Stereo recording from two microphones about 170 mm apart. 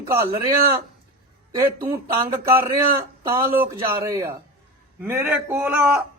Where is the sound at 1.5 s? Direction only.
20° right (ahead or behind).